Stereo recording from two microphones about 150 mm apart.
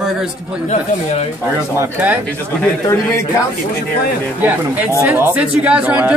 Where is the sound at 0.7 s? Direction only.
50° left (ahead or behind).